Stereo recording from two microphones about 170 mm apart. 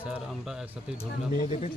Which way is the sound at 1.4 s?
40° left (ahead or behind).